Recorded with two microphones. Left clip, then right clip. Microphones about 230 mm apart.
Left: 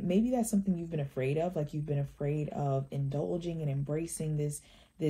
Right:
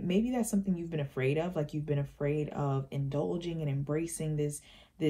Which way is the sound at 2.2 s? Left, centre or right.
Right.